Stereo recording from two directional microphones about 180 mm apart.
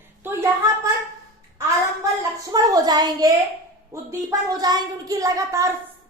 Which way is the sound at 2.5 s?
20° right (ahead or behind).